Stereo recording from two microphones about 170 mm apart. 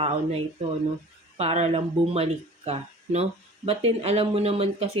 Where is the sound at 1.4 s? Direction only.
35° right (ahead or behind).